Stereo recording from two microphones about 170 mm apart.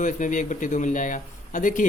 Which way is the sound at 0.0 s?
50° left (ahead or behind).